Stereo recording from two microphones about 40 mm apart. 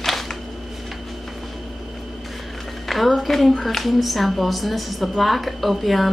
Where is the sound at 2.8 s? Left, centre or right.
Centre.